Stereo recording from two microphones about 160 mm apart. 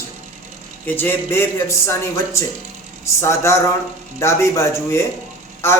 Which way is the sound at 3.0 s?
20° left (ahead or behind).